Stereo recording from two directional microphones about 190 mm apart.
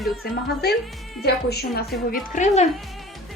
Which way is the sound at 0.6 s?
55° left (ahead or behind).